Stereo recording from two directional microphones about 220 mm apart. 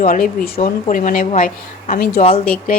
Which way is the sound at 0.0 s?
40° left (ahead or behind).